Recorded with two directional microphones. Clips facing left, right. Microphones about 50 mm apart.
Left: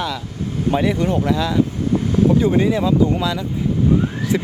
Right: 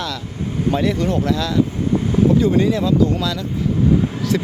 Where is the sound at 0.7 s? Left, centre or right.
Centre.